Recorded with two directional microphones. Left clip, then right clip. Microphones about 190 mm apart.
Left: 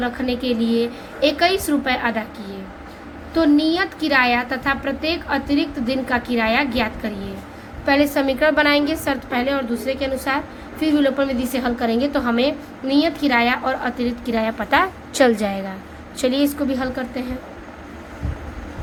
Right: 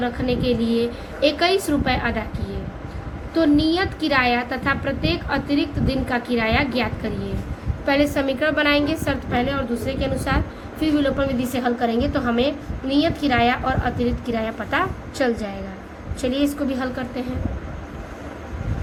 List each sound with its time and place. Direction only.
0.0 s a woman's voice: 25° left (ahead or behind)
3.3 s a woman's voice: 25° left (ahead or behind); by 15.5 s 50° left (ahead or behind)
16.2 s a woman's voice: 35° left (ahead or behind)